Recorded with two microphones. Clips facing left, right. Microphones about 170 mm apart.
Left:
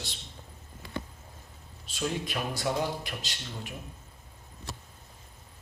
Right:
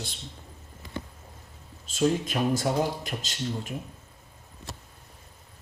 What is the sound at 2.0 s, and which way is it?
Speech, 45° right (ahead or behind).